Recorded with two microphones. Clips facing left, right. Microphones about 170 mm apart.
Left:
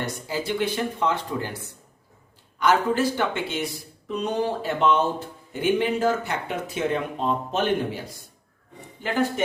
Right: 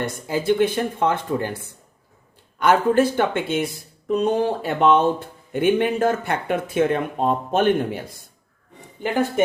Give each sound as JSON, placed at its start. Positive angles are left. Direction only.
{"t": 0.0, "sound": "speech", "side_deg": -50}
{"t": 2.6, "sound": "speech", "side_deg": -55}